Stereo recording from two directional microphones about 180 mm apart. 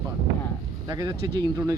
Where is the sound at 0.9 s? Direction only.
20° right (ahead or behind).